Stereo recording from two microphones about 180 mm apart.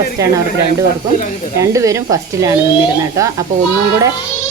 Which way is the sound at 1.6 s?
15° right (ahead or behind).